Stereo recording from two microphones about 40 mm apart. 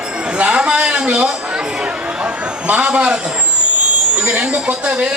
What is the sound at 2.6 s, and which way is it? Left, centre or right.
A man's voice, right.